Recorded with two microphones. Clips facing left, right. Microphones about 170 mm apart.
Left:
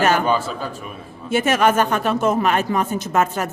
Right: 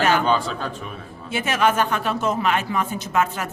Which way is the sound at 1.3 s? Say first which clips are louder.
Left 4 dB; 45° left (ahead or behind).